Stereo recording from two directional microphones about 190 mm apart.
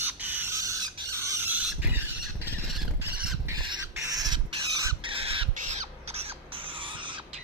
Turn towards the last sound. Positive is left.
turn(degrees=-25)  # may be behind; listen again after turning